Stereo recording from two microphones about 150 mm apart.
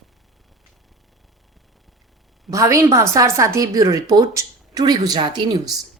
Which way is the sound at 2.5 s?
20° right (ahead or behind).